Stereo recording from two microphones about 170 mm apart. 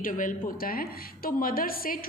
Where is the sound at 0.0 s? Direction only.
50° left (ahead or behind).